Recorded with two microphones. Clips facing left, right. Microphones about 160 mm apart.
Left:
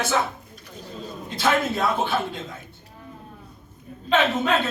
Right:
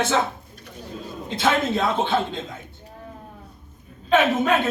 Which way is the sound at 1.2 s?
20° right (ahead or behind).